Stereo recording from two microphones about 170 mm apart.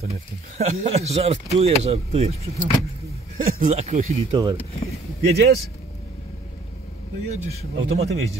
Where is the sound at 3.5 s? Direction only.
45° right (ahead or behind).